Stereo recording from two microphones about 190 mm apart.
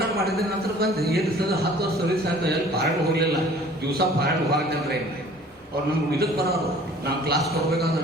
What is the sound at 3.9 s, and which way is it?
Speech, 55° right (ahead or behind).